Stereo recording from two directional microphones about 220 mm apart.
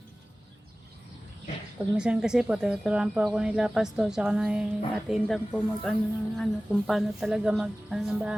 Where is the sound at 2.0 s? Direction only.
5° right (ahead or behind).